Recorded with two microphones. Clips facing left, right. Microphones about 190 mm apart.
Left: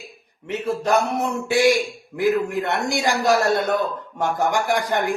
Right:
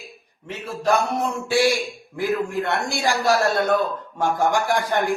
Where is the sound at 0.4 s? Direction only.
20° left (ahead or behind).